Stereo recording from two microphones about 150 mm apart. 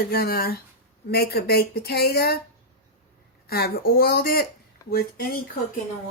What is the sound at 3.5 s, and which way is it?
Speech, 90° left.